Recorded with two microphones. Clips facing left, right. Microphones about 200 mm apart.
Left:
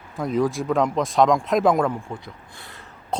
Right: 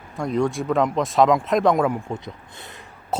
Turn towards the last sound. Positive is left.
turn(degrees=-5)  # may be behind; listen again after turning